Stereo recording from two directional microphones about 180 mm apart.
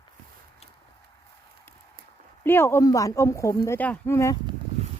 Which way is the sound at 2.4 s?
15° left (ahead or behind).